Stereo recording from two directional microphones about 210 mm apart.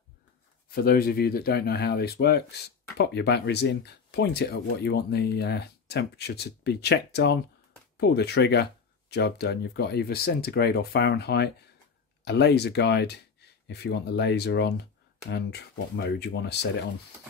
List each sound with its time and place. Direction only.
0.7 s speech: 45° left (ahead or behind)